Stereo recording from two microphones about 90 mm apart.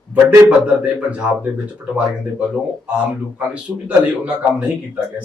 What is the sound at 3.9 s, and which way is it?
Speech, 15° right (ahead or behind).